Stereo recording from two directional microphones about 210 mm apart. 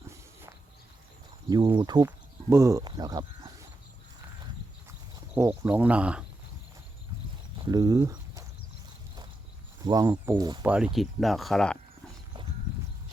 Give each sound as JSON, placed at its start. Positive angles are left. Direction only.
{"t": 1.5, "sound": "speech", "side_deg": -20}
{"t": 4.9, "sound": "speech", "side_deg": -10}
{"t": 7.6, "sound": "speech", "side_deg": -20}
{"t": 9.8, "sound": "speech", "side_deg": -15}
{"t": 10.6, "sound": "speech", "side_deg": -5}